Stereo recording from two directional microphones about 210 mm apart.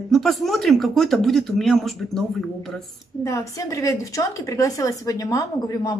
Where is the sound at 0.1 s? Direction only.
Centre (ahead or behind).